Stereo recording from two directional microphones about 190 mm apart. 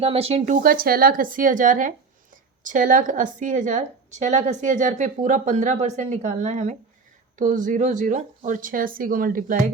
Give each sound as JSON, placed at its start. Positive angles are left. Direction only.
{"t": 0.0, "sound": "a woman's voice", "side_deg": -30}